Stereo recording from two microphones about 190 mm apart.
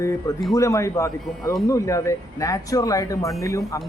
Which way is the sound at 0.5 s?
15° left (ahead or behind).